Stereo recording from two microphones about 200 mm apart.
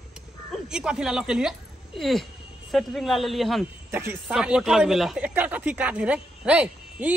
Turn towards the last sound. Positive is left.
turn(degrees=-5)  # may be behind; listen again after turning